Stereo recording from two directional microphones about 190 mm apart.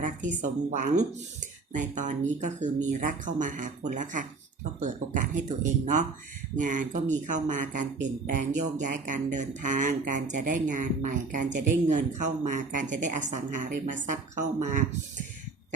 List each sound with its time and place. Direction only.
0.0 s speech: 40° right (ahead or behind)